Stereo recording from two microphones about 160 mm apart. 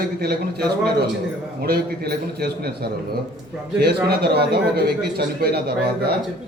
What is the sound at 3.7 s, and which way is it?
A man's voice, 85° right.